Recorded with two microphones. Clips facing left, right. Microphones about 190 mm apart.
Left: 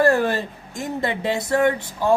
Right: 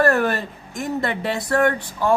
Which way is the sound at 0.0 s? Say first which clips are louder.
Left 1 dB; 25° left (ahead or behind).